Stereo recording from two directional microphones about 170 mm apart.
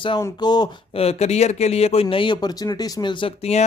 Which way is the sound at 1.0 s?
40° left (ahead or behind).